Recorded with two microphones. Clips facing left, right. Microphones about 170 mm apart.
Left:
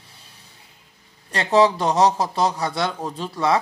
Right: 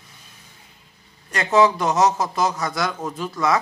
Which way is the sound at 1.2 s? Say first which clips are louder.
Even; 35° left (ahead or behind).